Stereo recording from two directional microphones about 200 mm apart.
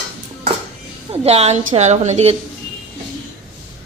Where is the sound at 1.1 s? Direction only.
30° right (ahead or behind).